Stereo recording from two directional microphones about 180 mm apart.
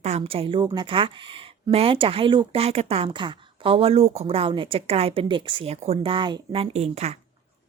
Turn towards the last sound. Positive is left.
turn(degrees=-35)  # may be behind; listen again after turning